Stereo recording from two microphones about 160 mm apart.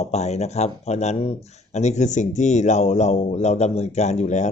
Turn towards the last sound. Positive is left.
turn(degrees=45)  # may be behind; listen again after turning